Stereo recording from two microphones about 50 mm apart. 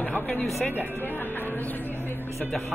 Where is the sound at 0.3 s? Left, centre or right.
Left.